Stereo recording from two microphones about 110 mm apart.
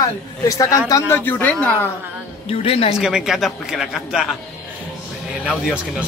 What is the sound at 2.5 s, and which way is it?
Speech, 65° left (ahead or behind).